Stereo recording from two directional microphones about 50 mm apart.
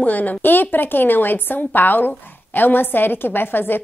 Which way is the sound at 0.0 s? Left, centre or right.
Left.